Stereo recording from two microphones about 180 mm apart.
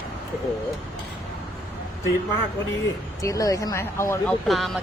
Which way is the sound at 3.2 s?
20° left (ahead or behind).